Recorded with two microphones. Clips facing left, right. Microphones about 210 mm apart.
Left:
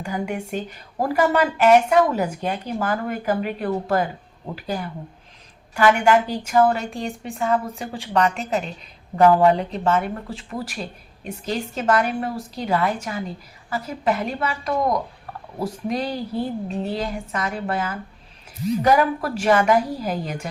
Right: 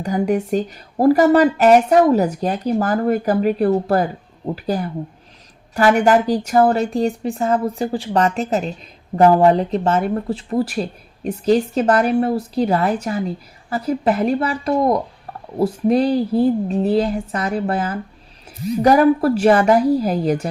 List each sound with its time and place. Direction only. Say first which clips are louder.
0.0 s a woman's voice: right 8 dB; 40° right (ahead or behind)